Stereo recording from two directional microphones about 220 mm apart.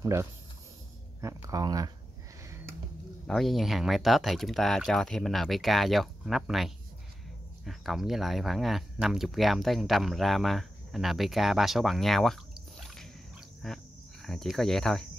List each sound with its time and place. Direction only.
0.0 s speech: 15° right (ahead or behind)
2.4 s a sound: 10° right (ahead or behind)
3.3 s speech: centre (ahead or behind)
12.8 s squish: centre (ahead or behind)
13.6 s speech: centre (ahead or behind)